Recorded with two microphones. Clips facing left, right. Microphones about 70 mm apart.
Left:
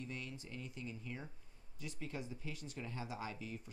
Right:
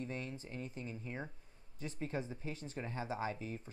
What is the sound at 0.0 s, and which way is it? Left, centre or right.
Speech, right.